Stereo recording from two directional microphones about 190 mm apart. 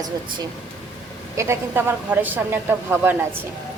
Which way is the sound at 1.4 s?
10° right (ahead or behind).